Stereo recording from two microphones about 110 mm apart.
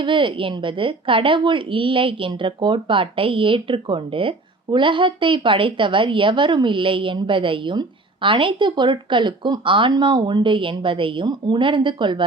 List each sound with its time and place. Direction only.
0.0 s a woman's voice: 50° right (ahead or behind)